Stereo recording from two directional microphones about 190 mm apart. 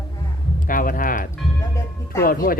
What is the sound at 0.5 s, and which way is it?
Speech, 45° left (ahead or behind).